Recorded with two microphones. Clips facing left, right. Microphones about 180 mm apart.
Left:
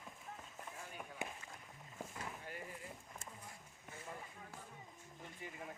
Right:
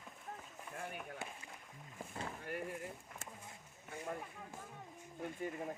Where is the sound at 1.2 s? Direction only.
15° left (ahead or behind).